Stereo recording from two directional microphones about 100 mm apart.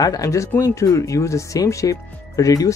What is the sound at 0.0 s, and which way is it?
Speech, 35° left (ahead or behind).